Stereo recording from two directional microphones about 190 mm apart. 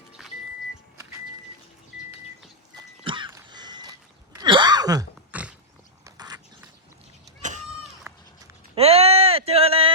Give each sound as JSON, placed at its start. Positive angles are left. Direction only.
{"t": 0.2, "sound": "vehicle", "side_deg": 0}
{"t": 3.0, "sound": "music", "side_deg": -25}
{"t": 4.4, "sound": "a sound", "side_deg": -25}
{"t": 5.3, "sound": "dog", "side_deg": -5}
{"t": 6.1, "sound": "biting", "side_deg": -20}
{"t": 8.1, "sound": "cat", "side_deg": -10}
{"t": 8.7, "sound": "a sound", "side_deg": -30}